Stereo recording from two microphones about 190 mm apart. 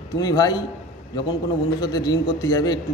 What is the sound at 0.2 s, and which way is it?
A man's voice, 20° left (ahead or behind).